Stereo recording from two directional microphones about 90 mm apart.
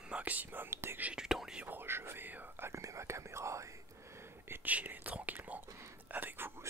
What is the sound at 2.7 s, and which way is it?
Whispering, 35° right (ahead or behind).